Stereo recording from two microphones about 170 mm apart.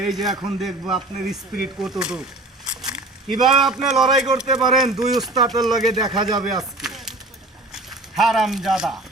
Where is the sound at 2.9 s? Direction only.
Centre (ahead or behind).